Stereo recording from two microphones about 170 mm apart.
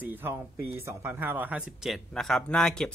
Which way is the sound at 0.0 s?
10° right (ahead or behind).